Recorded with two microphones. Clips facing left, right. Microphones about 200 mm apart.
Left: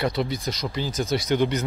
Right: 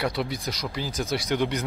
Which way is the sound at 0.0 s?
5° right (ahead or behind).